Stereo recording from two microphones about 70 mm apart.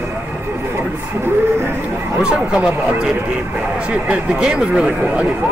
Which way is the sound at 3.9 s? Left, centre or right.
Centre.